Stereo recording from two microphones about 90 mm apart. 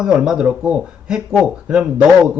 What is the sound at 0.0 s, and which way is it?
Speech, 10° right (ahead or behind).